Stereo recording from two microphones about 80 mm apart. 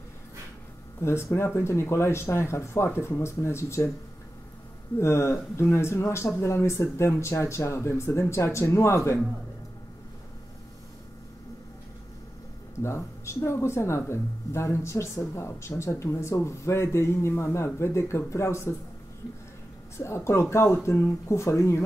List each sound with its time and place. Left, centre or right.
1.0 s speech: left
4.9 s speech: left
12.8 s speech: left
20.0 s speech: left